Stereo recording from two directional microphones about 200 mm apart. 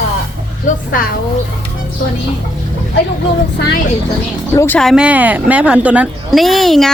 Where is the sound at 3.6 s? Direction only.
60° left (ahead or behind).